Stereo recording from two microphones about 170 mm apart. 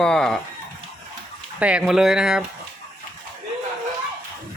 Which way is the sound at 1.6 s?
5° right (ahead or behind).